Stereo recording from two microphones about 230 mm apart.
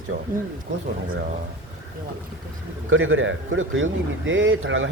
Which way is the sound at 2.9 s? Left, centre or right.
Right.